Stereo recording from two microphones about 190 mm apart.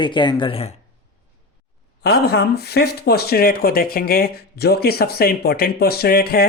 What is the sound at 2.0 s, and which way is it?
Speech, 55° left (ahead or behind).